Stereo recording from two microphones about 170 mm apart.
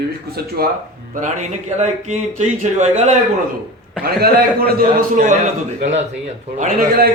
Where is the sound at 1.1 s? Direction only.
45° right (ahead or behind).